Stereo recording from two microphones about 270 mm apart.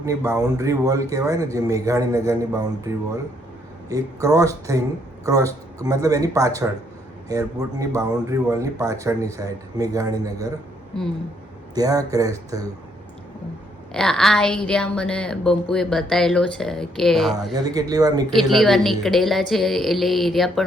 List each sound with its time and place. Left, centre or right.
0.0 s a man's voice: centre
11.7 s a man's voice: centre
13.9 s a woman's voice: centre
17.5 s a man's voice: centre
18.3 s a woman's voice: centre